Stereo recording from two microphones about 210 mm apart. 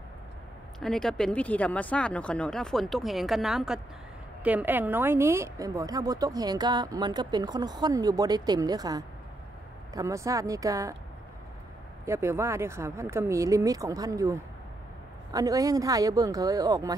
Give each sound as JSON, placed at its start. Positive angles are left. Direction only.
{"t": 0.7, "sound": "a woman's voice", "side_deg": 0}
{"t": 12.1, "sound": "a woman's voice", "side_deg": -15}